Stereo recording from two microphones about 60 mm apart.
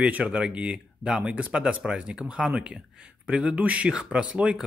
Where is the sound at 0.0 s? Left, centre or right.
Right.